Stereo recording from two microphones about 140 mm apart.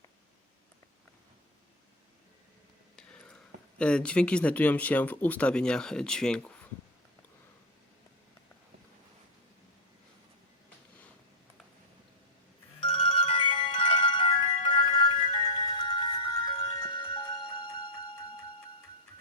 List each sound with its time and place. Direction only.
2.9 s speech: 5° left (ahead or behind)
12.9 s ringtone: 40° left (ahead or behind)
16.6 s music: 35° left (ahead or behind)